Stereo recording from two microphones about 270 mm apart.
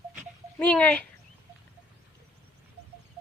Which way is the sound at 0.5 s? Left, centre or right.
Centre.